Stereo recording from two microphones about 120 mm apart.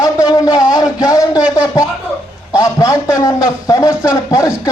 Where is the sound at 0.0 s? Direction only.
25° left (ahead or behind).